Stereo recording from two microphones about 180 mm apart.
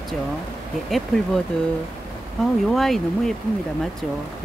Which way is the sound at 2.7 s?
Centre (ahead or behind).